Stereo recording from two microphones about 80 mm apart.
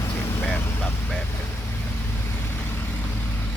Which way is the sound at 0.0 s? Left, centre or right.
Left.